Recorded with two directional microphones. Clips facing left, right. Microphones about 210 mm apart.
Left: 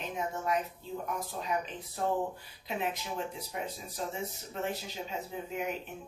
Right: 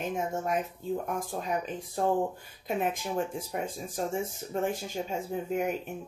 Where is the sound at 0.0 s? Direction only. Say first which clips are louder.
Right 4 dB; 50° right (ahead or behind).